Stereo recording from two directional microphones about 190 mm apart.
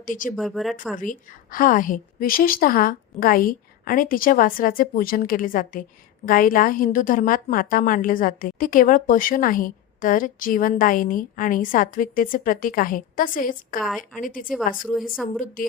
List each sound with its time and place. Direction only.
0.0 s a woman's voice: 45° left (ahead or behind)
0.3 s speech: centre (ahead or behind)
0.9 s a woman's voice: 45° left (ahead or behind)
13.8 s speech: centre (ahead or behind)
14.2 s a woman's voice: 45° left (ahead or behind)